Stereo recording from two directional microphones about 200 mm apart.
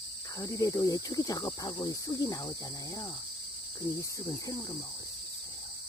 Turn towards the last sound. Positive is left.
turn(degrees=15)  # may be behind; listen again after turning